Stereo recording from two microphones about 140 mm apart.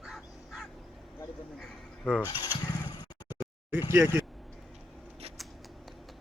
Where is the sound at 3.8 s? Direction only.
20° right (ahead or behind).